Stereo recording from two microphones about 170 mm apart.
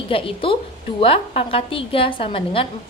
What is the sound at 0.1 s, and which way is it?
A woman's voice, 30° left (ahead or behind).